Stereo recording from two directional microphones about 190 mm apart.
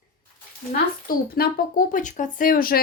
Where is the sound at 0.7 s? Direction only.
55° left (ahead or behind).